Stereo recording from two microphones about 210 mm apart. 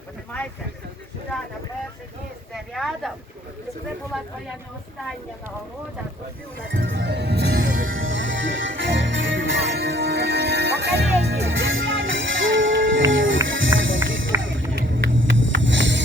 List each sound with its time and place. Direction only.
2.7 s speech: centre (ahead or behind)
6.7 s music: 60° right (ahead or behind)
7.9 s music: 70° right (ahead or behind)